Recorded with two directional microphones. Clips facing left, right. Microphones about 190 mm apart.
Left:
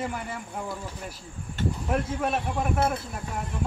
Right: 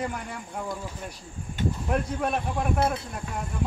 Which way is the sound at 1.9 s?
5° left (ahead or behind).